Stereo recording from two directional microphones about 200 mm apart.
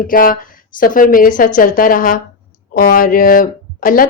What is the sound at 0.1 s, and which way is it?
A woman's voice, 45° left (ahead or behind).